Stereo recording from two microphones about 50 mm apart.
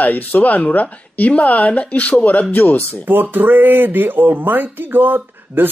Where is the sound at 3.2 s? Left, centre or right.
Right.